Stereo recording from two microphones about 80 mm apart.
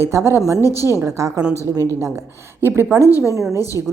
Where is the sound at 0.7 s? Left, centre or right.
Left.